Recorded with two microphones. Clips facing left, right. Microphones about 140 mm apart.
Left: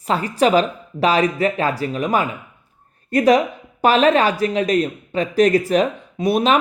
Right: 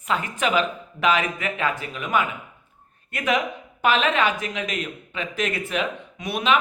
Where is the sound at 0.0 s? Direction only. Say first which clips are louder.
Left 7 dB; 35° left (ahead or behind).